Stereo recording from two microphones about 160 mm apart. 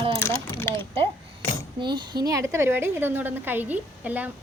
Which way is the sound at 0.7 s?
35° right (ahead or behind).